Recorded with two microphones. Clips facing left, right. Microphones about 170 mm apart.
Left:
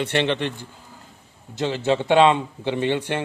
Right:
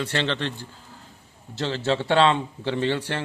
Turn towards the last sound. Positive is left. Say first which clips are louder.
# left 2 dB
turn(degrees=15)  # may be behind; listen again after turning